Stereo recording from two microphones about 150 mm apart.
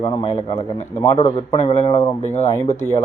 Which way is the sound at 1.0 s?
35° left (ahead or behind).